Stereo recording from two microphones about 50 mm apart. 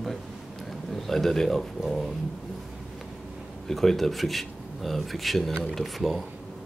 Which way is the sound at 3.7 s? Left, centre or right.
Centre.